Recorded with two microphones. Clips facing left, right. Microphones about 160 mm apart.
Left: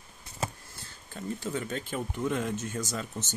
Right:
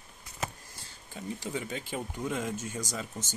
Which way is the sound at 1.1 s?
15° right (ahead or behind).